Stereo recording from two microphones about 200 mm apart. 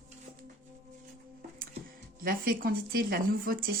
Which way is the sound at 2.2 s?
45° right (ahead or behind).